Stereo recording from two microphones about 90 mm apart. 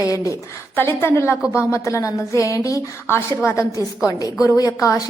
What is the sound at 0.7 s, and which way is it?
Speech, 25° left (ahead or behind).